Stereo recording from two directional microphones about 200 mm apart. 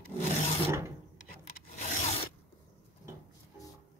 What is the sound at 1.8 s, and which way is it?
Zipper, 35° left (ahead or behind).